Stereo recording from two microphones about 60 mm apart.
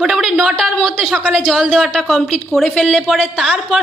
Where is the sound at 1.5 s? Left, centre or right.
Centre.